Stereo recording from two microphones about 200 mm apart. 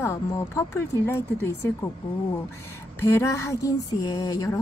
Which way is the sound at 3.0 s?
15° left (ahead or behind).